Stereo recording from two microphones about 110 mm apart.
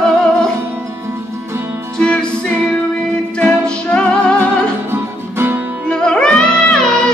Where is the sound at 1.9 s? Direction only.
10° left (ahead or behind).